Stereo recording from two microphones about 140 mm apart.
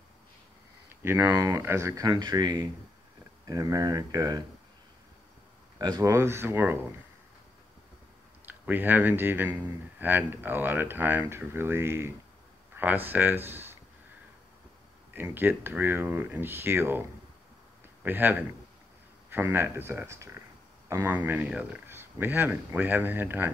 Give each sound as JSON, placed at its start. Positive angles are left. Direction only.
{"t": 0.8, "sound": "speech", "side_deg": -15}
{"t": 5.8, "sound": "speech", "side_deg": -30}
{"t": 8.5, "sound": "a man's voice", "side_deg": -15}
{"t": 15.3, "sound": "a man's voice", "side_deg": -15}
{"t": 18.0, "sound": "a man's voice", "side_deg": -15}